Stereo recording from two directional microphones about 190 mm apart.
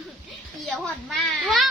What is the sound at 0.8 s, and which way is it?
Speech, centre (ahead or behind).